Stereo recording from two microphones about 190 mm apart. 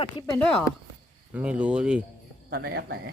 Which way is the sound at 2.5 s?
60° right (ahead or behind).